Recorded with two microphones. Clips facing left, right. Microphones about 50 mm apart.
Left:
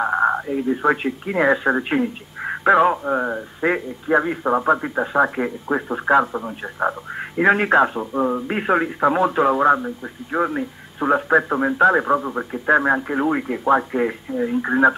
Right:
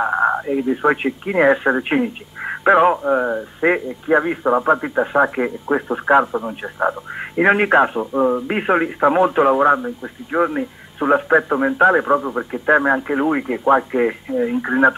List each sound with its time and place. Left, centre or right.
0.0 s radio: centre
0.7 s speech: centre
4.4 s speech: centre
7.2 s speech: centre
8.0 s speech: centre
8.5 s speech: centre
9.8 s speech: centre
10.4 s speech: centre